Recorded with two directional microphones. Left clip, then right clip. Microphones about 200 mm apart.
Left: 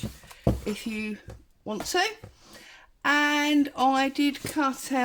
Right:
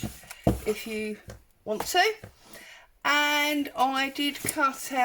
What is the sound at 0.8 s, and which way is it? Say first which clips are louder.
Speech: right 1 dB; 45° left (ahead or behind).